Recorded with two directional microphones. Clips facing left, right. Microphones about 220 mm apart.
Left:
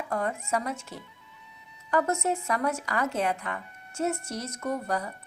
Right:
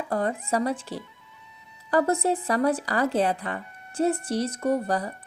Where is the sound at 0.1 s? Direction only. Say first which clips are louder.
Right 3 dB; 35° right (ahead or behind).